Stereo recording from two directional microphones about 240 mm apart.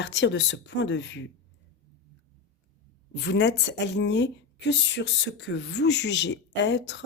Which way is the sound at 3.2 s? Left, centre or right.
Left.